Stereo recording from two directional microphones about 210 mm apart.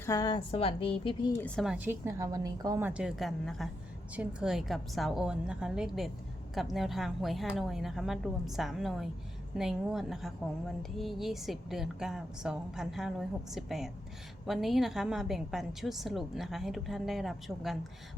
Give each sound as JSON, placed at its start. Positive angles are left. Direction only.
{"t": 0.0, "sound": "a woman's voice", "side_deg": 15}
{"t": 1.4, "sound": "a woman's voice", "side_deg": 5}